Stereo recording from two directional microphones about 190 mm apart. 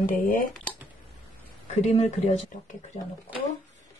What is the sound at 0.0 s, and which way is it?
Speech, 45° left (ahead or behind).